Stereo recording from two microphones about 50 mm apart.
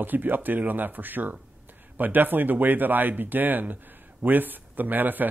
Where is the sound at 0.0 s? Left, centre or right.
Right.